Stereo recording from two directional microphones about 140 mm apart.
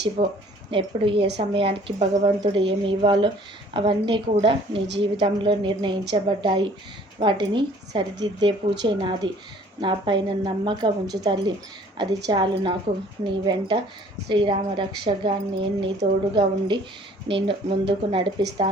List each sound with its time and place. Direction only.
0.7 s a woman's voice: 40° right (ahead or behind)